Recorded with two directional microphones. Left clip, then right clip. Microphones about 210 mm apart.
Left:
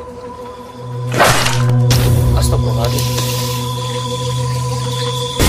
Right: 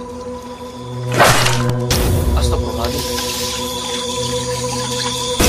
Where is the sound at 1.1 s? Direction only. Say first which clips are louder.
Even; centre (ahead or behind).